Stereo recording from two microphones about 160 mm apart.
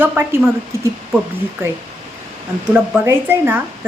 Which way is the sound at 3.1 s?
15° right (ahead or behind).